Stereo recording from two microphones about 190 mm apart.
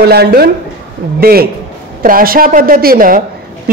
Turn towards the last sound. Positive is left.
turn(degrees=-50)  # may be behind; listen again after turning